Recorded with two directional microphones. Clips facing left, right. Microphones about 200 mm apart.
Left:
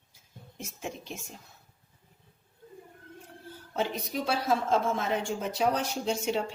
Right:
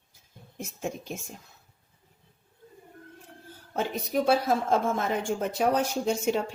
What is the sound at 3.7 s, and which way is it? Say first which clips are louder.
Speech: right 3 dB; 50° right (ahead or behind).